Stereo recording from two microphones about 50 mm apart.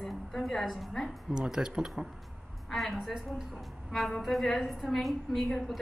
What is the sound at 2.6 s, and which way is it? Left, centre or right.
Speech, centre.